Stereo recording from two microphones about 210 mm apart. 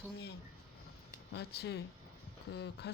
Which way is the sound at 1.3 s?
50° left (ahead or behind).